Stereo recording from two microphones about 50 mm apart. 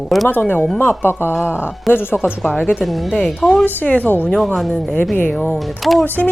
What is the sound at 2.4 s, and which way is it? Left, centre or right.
Speech, left.